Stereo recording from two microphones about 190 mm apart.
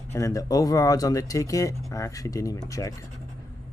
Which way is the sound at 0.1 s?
15° left (ahead or behind).